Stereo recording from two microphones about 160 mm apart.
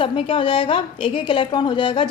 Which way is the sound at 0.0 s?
35° left (ahead or behind).